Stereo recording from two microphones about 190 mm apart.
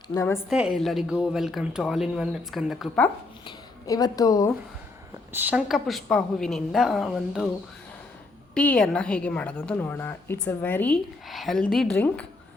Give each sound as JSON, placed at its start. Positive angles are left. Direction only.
{"t": 0.1, "sound": "a woman's voice", "side_deg": 15}
{"t": 0.5, "sound": "a woman's voice", "side_deg": -5}
{"t": 3.4, "sound": "speech", "side_deg": 20}
{"t": 5.3, "sound": "a woman's voice", "side_deg": -10}
{"t": 8.5, "sound": "a woman's voice", "side_deg": 5}